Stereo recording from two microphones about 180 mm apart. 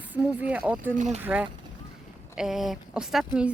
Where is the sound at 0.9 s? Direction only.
45° right (ahead or behind).